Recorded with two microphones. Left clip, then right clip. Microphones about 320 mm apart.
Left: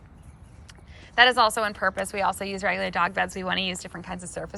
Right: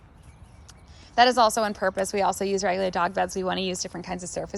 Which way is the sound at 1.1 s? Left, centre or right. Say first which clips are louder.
Even; centre.